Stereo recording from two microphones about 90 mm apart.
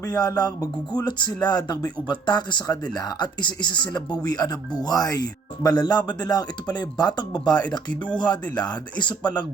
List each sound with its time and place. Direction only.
0.0 s speech: 40° left (ahead or behind)